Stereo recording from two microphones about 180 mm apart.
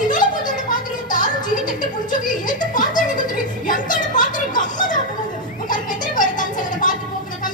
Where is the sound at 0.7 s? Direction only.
45° left (ahead or behind).